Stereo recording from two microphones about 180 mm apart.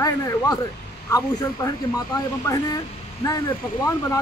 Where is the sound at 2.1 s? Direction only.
20° left (ahead or behind).